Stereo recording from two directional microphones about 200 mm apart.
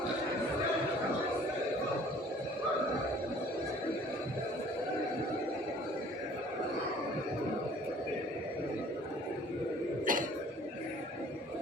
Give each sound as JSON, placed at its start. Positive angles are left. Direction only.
{"t": 10.1, "sound": "throat clearing", "side_deg": -40}